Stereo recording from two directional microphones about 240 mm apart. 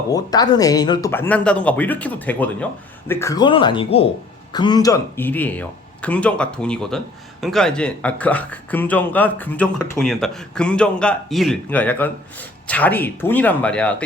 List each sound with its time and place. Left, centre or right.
0.1 s a man's voice: centre